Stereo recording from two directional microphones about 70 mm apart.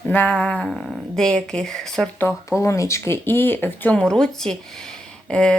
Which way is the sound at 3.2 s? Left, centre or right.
Left.